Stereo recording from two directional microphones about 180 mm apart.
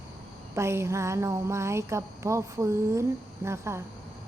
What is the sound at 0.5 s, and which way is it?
A woman's voice, 15° right (ahead or behind).